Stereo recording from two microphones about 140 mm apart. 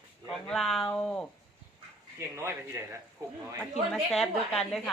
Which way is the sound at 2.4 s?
20° right (ahead or behind).